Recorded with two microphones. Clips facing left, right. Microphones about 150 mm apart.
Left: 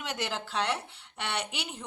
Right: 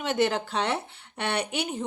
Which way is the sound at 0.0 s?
55° right (ahead or behind).